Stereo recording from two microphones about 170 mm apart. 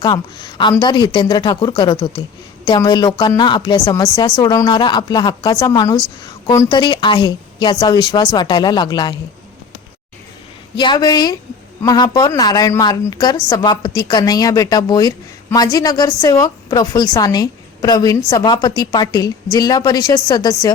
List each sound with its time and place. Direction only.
0.0 s a woman's voice: 25° left (ahead or behind)
10.8 s a woman's voice: 25° left (ahead or behind)